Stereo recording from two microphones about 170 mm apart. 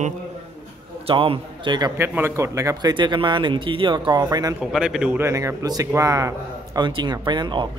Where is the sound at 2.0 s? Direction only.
15° right (ahead or behind).